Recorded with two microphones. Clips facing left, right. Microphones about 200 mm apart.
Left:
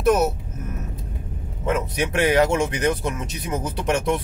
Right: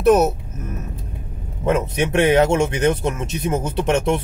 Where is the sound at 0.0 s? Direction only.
35° right (ahead or behind).